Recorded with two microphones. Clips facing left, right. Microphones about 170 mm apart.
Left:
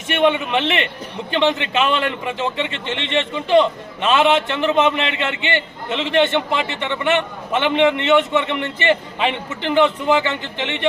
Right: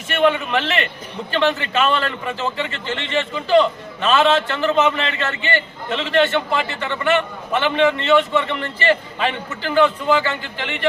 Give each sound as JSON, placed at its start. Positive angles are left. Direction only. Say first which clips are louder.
{"t": 0.1, "sound": "a man's voice", "louder": "left 1 dB", "side_deg": 20}